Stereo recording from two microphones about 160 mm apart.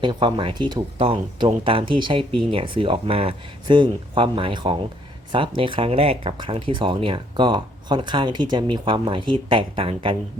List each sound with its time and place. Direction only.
0.0 s speech: 30° right (ahead or behind)